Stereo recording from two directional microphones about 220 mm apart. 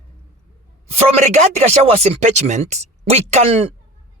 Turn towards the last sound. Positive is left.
turn(degrees=-25)  # may be behind; listen again after turning